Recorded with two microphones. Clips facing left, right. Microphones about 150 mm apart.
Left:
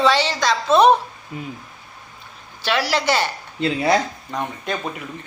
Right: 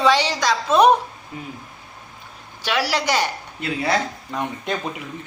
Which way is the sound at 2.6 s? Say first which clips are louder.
Left 1 dB; 10° right (ahead or behind).